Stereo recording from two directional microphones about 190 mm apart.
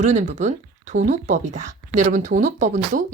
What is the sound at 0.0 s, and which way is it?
Speech, 40° right (ahead or behind).